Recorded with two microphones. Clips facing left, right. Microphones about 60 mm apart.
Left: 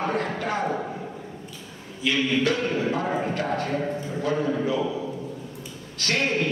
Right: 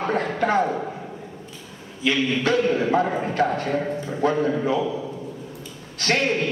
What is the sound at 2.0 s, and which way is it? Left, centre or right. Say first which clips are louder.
A man's voice: right 2 dB; right.